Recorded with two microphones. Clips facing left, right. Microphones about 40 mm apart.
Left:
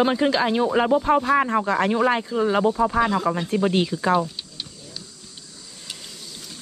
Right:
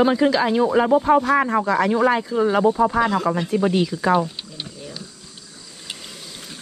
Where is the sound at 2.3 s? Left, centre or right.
Left.